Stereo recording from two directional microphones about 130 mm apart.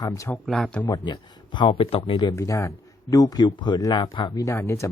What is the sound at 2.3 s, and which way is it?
Speech, 25° left (ahead or behind).